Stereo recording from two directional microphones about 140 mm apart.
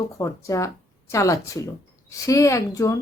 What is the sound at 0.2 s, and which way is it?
A woman's voice, 20° left (ahead or behind).